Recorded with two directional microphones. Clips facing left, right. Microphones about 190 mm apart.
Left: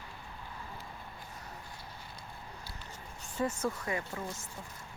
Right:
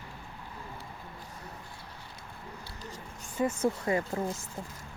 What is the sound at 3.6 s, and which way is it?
Speech, 35° right (ahead or behind).